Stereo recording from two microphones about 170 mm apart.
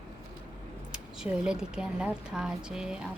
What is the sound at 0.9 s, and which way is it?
Speech, 5° right (ahead or behind).